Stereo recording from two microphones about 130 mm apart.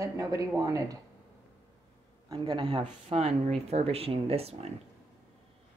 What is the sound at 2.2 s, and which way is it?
Speech, 35° right (ahead or behind).